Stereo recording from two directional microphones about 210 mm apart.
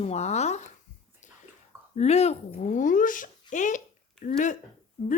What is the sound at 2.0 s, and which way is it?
A woman's voice, 30° left (ahead or behind).